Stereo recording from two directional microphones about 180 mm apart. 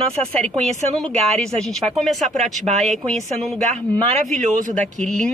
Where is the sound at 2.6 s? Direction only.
40° right (ahead or behind).